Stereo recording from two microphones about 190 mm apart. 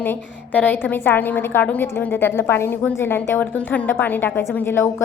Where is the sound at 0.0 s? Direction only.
10° left (ahead or behind).